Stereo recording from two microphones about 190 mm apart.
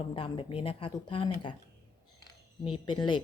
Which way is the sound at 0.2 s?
30° left (ahead or behind).